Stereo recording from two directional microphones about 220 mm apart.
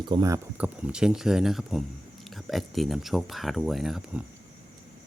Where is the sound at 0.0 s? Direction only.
20° right (ahead or behind).